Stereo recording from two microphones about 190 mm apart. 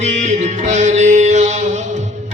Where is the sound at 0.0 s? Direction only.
40° right (ahead or behind).